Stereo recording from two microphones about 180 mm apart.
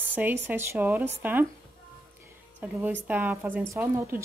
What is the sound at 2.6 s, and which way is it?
Speech, 10° right (ahead or behind).